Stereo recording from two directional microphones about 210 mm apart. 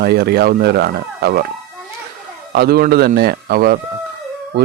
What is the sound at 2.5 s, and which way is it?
Speech, 50° right (ahead or behind).